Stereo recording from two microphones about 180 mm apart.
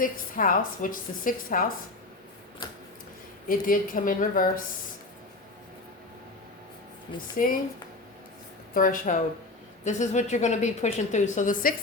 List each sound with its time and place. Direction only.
0.0 s a woman's voice: 50° left (ahead or behind)
3.5 s a woman's voice: 50° left (ahead or behind)
7.4 s a woman's voice: 50° left (ahead or behind)
8.7 s a woman's voice: 50° left (ahead or behind)